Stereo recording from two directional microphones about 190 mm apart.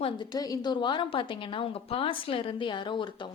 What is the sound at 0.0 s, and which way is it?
A woman's voice, 20° left (ahead or behind).